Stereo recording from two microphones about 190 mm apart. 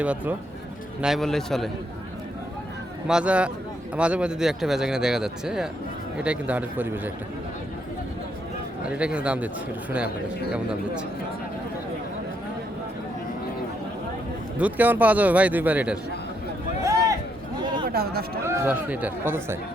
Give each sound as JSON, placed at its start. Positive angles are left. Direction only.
{"t": 0.0, "sound": "speech", "side_deg": -5}
{"t": 3.1, "sound": "speech", "side_deg": -5}
{"t": 8.9, "sound": "speech", "side_deg": -5}
{"t": 10.5, "sound": "speech", "side_deg": -5}
{"t": 14.6, "sound": "speech", "side_deg": -10}
{"t": 16.8, "sound": "a sound", "side_deg": -15}
{"t": 17.8, "sound": "speech", "side_deg": -55}
{"t": 18.4, "sound": "speech", "side_deg": -10}